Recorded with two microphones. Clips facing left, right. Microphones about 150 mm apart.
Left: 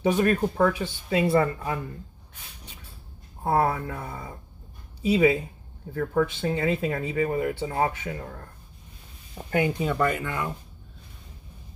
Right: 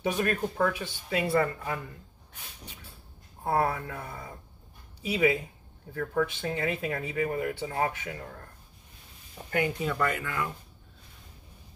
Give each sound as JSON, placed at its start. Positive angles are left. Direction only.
{"t": 0.0, "sound": "speech", "side_deg": 30}
{"t": 3.4, "sound": "speech", "side_deg": 30}
{"t": 9.5, "sound": "speech", "side_deg": 20}